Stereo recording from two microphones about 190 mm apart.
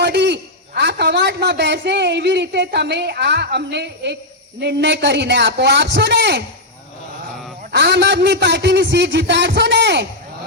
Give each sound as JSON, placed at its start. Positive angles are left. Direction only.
{"t": 0.0, "sound": "a man's voice", "side_deg": -65}
{"t": 7.7, "sound": "a man's voice", "side_deg": -65}